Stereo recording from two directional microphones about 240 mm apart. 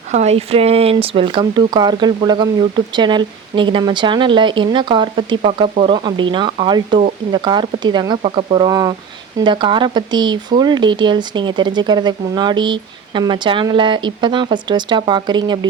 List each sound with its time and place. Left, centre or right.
0.1 s speech: right